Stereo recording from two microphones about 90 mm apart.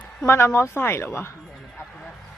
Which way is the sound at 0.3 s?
30° left (ahead or behind).